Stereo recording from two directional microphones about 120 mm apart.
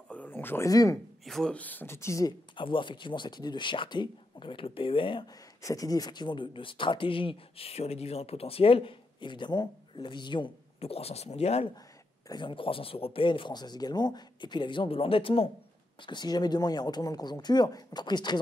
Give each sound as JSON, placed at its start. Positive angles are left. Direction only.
{"t": 0.1, "sound": "a sound", "side_deg": 15}
{"t": 0.7, "sound": "speech", "side_deg": 30}
{"t": 1.2, "sound": "speech", "side_deg": 5}
{"t": 2.5, "sound": "speech", "side_deg": 45}
{"t": 5.6, "sound": "speech", "side_deg": 30}
{"t": 10.8, "sound": "speech", "side_deg": 55}
{"t": 12.3, "sound": "speech", "side_deg": 40}
{"t": 16.0, "sound": "speech", "side_deg": 40}